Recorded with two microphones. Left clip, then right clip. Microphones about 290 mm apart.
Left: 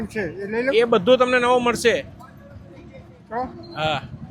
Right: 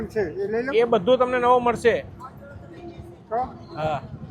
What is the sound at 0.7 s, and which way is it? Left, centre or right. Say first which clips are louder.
Speech: left 3 dB; left.